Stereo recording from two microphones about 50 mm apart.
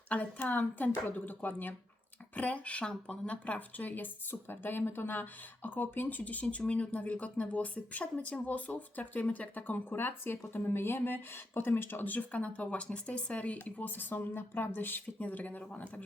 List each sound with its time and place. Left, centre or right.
0.4 s speech: left
2.3 s speech: left
15.2 s speech: left